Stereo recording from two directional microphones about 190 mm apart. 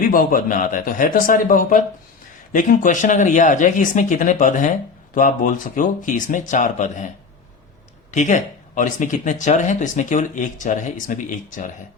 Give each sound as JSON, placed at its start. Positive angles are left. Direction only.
{"t": 0.0, "sound": "speech", "side_deg": 45}
{"t": 8.1, "sound": "speech", "side_deg": 40}